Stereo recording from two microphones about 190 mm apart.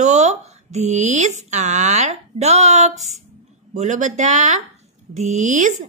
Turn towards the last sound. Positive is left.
turn(degrees=-40)  # may be behind; listen again after turning